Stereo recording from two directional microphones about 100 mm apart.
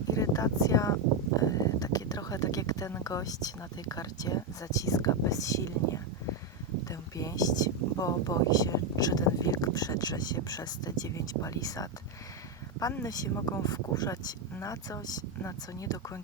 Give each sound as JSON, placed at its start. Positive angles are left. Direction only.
{"t": 0.1, "sound": "speech", "side_deg": 35}
{"t": 13.1, "sound": "speech", "side_deg": 35}